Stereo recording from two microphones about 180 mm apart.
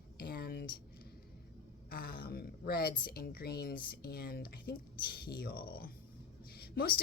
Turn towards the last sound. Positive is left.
turn(degrees=55)  # may be behind; listen again after turning